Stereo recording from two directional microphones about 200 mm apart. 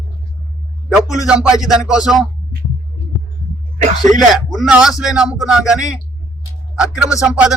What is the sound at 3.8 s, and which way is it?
Speech, 35° right (ahead or behind).